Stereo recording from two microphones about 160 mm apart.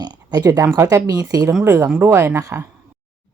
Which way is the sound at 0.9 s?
25° right (ahead or behind).